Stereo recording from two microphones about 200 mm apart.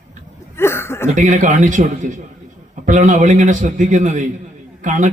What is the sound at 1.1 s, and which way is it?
A man's voice, 40° right (ahead or behind).